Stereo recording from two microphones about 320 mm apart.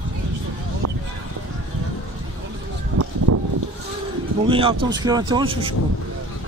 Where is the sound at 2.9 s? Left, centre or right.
Right.